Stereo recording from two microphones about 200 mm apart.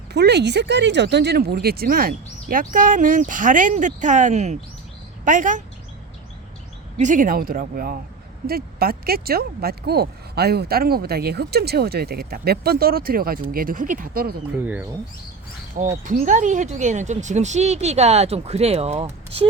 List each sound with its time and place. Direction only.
0.1 s speech: 55° right (ahead or behind); by 5.6 s 40° right (ahead or behind)
6.9 s speech: 40° right (ahead or behind)
16.0 s speech: 40° right (ahead or behind)